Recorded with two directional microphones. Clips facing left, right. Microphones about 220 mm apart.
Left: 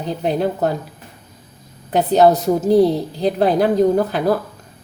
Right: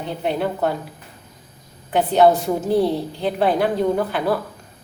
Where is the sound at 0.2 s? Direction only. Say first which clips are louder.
Left 3 dB; 40° left (ahead or behind).